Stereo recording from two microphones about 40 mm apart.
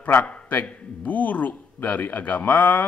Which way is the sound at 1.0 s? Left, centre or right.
Left.